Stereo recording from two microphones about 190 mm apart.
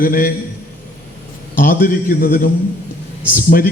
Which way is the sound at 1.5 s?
45° left (ahead or behind).